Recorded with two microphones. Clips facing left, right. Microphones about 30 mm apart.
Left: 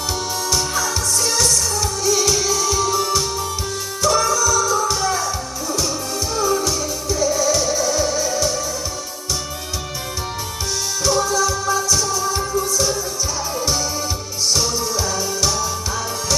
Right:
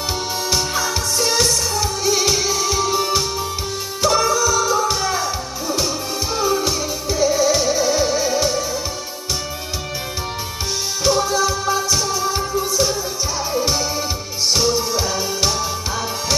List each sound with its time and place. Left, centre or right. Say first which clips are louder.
0.4 s music: right 1 dB; right
11.0 s music: right 1 dB; right